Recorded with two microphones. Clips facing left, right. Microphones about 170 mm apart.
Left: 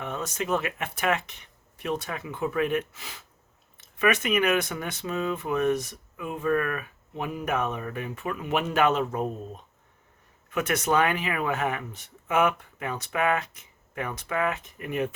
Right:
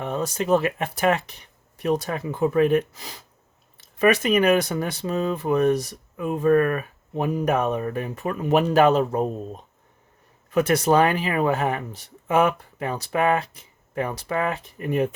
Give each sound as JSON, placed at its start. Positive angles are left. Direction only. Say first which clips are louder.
{"t": 0.0, "sound": "speech", "louder": "right 6 dB", "side_deg": -35}